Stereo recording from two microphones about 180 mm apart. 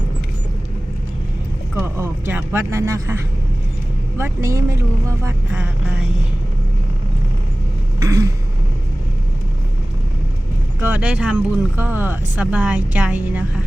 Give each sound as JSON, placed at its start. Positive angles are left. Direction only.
{"t": 1.8, "sound": "speech", "side_deg": -10}
{"t": 4.2, "sound": "speech", "side_deg": -15}
{"t": 8.0, "sound": "speech", "side_deg": -15}
{"t": 10.8, "sound": "speech", "side_deg": -5}